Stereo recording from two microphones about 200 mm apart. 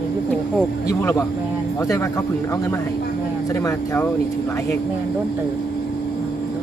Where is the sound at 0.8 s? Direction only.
15° left (ahead or behind).